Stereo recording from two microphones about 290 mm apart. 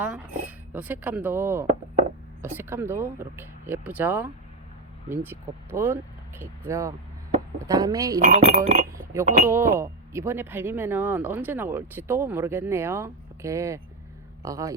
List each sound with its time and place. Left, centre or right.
0.0 s speech: centre
8.2 s speech: right
9.5 s speech: centre